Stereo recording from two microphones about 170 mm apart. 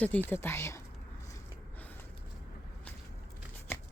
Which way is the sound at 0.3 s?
15° left (ahead or behind).